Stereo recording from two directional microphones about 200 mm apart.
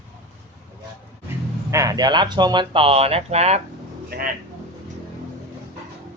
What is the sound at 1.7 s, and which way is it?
Speech, 15° right (ahead or behind).